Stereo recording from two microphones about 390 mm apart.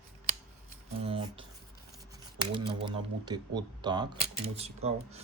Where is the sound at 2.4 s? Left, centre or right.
Centre.